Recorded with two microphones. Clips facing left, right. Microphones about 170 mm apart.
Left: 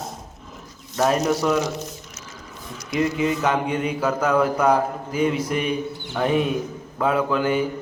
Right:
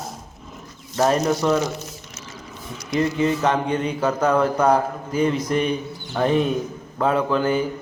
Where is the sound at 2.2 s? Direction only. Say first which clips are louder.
Right 2 dB; 5° right (ahead or behind).